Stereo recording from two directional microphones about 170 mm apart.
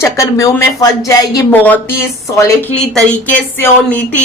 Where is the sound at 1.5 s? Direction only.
10° left (ahead or behind).